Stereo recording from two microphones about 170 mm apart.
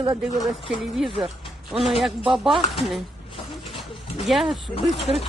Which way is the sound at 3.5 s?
Centre (ahead or behind).